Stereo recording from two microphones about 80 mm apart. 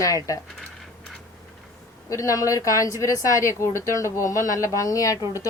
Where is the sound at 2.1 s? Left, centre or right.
Left.